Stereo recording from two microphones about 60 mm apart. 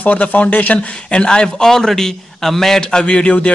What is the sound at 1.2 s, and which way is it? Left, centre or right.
A man's voice, centre.